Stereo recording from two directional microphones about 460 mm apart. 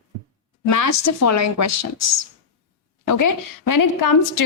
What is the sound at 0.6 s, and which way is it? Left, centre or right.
A woman's voice, left.